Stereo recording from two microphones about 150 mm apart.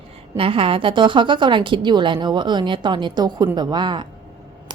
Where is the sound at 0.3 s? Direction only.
35° right (ahead or behind).